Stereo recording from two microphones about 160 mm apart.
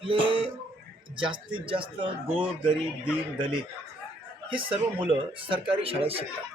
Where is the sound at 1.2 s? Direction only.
30° right (ahead or behind).